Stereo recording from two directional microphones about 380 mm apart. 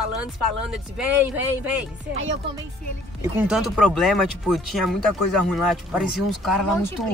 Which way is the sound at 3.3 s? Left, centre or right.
Centre.